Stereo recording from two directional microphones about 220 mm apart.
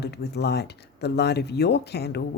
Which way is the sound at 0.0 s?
50° left (ahead or behind).